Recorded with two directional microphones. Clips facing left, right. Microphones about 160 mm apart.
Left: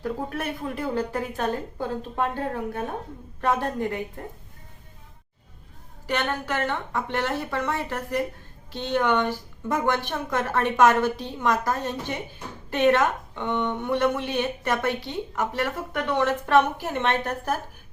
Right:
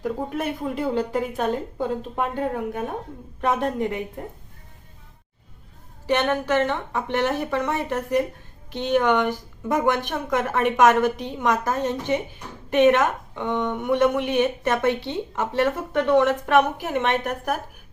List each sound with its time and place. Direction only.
0.0 s a woman's voice: 15° right (ahead or behind)
6.1 s a woman's voice: 20° right (ahead or behind)